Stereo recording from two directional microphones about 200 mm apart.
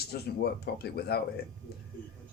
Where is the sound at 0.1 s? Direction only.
50° left (ahead or behind).